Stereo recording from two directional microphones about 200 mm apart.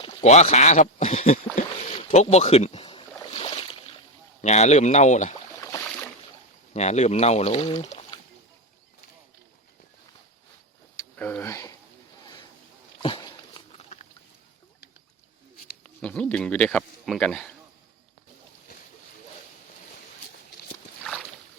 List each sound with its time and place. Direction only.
0.0 s speech: 30° left (ahead or behind)
3.2 s boat: 25° left (ahead or behind)
4.4 s speech: 35° left (ahead or behind)
5.5 s boat: 15° left (ahead or behind)
6.7 s speech: 35° left (ahead or behind)
10.9 s speech: 10° left (ahead or behind)
13.0 s a sound: 25° left (ahead or behind)
16.0 s speech: 5° left (ahead or behind)